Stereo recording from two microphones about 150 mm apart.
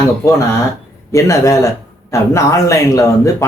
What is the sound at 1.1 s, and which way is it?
Speech, 20° left (ahead or behind).